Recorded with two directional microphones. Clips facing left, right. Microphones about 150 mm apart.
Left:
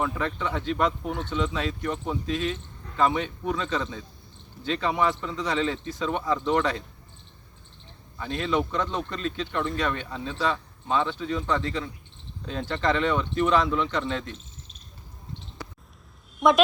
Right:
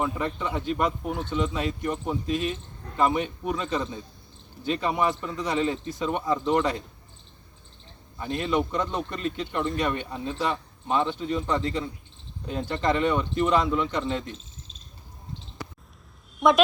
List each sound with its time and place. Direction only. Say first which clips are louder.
0.0 s speech: even; 10° right (ahead or behind)
8.2 s speech: right 1 dB; 10° right (ahead or behind)
16.4 s a woman's voice: even; centre (ahead or behind)